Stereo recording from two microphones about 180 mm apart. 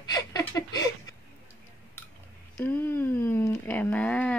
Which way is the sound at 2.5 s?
10° left (ahead or behind).